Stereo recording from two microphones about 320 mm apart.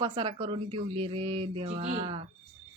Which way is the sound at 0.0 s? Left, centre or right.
Centre.